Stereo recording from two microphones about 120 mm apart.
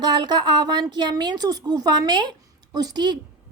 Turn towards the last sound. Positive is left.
turn(degrees=-35)  # may be behind; listen again after turning